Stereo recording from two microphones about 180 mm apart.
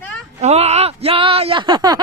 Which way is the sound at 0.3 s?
35° right (ahead or behind).